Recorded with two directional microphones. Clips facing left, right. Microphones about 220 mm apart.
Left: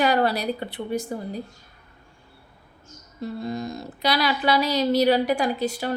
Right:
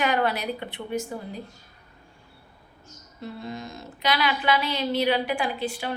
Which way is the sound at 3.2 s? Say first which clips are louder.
Left 6 dB; 40° left (ahead or behind).